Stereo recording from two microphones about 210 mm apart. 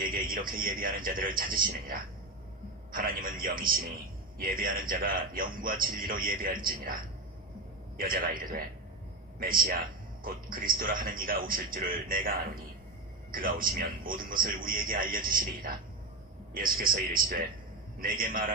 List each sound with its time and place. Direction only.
0.0 s a man's voice: 40° right (ahead or behind)
13.3 s a man's voice: 40° right (ahead or behind)